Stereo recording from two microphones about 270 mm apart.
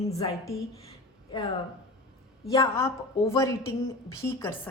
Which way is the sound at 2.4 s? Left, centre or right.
Centre.